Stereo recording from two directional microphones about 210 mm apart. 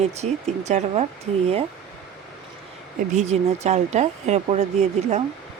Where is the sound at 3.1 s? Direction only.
30° right (ahead or behind).